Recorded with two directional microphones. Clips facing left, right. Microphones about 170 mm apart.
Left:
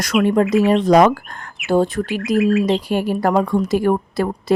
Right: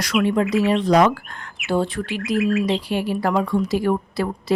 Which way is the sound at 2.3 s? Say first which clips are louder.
Left 4 dB; centre (ahead or behind).